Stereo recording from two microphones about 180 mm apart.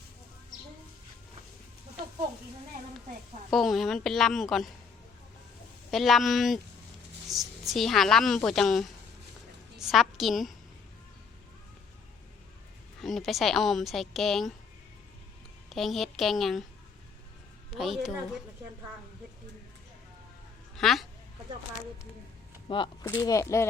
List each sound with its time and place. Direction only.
3.5 s a woman's voice: centre (ahead or behind)
5.9 s a woman's voice: centre (ahead or behind)
13.0 s a woman's voice: centre (ahead or behind)
15.7 s a woman's voice: centre (ahead or behind)
17.7 s a woman's voice: centre (ahead or behind)
20.7 s speech: centre (ahead or behind)
22.7 s speech: 30° left (ahead or behind)